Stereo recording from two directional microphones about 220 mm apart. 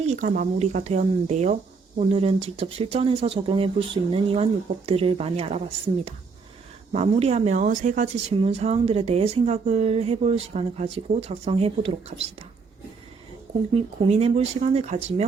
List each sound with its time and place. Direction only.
0.0 s speech: 30° right (ahead or behind)
6.9 s speech: 30° right (ahead or behind)
13.7 s speech: 25° right (ahead or behind)